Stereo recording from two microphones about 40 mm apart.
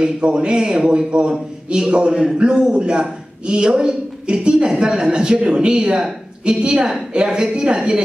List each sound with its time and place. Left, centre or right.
0.0 s a man's voice: right